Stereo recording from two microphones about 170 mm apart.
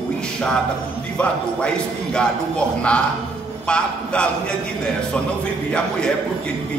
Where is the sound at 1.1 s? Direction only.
5° left (ahead or behind).